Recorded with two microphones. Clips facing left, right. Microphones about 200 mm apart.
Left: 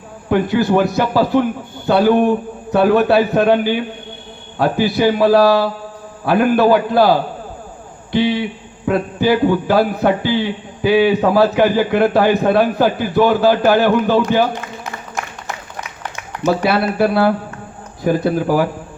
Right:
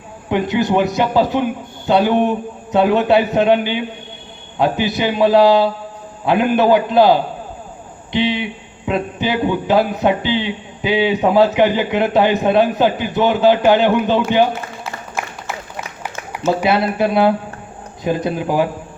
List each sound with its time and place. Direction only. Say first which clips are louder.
0.3 s a man's voice: left 2 dB; 20° right (ahead or behind)
16.6 s a man's voice: even; 20° right (ahead or behind)